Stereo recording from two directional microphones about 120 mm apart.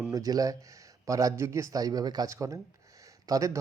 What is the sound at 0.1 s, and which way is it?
Speech, 30° right (ahead or behind).